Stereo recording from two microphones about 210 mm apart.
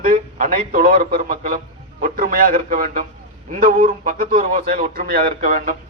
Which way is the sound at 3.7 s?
30° right (ahead or behind).